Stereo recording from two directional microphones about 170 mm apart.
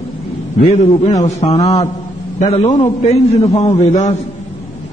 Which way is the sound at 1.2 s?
40° left (ahead or behind).